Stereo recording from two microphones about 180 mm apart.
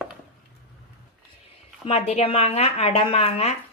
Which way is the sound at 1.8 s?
35° left (ahead or behind).